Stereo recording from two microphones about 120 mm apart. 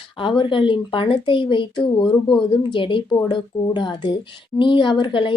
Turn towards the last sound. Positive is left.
turn(degrees=45)  # may be behind; listen again after turning